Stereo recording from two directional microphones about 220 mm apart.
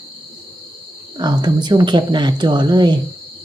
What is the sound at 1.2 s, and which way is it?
Speech, 20° right (ahead or behind).